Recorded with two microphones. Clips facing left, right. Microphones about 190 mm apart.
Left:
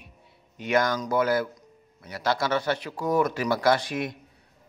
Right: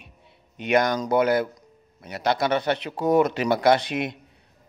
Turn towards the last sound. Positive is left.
turn(degrees=-20)  # may be behind; listen again after turning